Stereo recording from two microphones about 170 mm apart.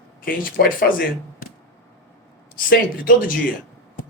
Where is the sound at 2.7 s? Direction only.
55° left (ahead or behind).